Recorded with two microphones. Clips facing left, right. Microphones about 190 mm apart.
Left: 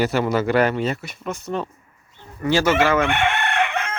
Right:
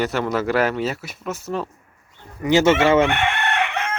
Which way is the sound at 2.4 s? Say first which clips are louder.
Right 2 dB; 20° right (ahead or behind).